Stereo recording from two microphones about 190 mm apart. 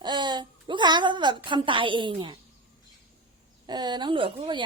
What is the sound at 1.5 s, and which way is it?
Speech, 25° right (ahead or behind).